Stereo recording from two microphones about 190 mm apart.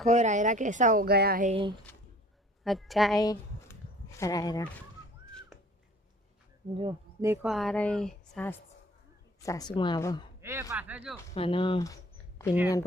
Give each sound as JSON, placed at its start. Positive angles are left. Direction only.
{"t": 0.0, "sound": "a woman's voice", "side_deg": -40}
{"t": 1.5, "sound": "speech", "side_deg": -30}
{"t": 2.6, "sound": "speech", "side_deg": 0}
{"t": 3.2, "sound": "a sound", "side_deg": 20}
{"t": 4.2, "sound": "speech", "side_deg": 20}
{"t": 6.7, "sound": "speech", "side_deg": -25}
{"t": 7.4, "sound": "speech", "side_deg": 0}
{"t": 9.4, "sound": "speech", "side_deg": 20}
{"t": 10.4, "sound": "speech", "side_deg": -15}
{"t": 11.3, "sound": "speech", "side_deg": 30}